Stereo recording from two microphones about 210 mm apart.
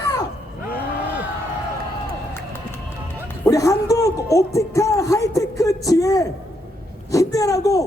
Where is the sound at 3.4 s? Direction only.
15° left (ahead or behind).